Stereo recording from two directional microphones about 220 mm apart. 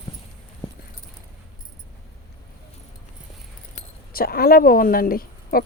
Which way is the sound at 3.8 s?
40° left (ahead or behind).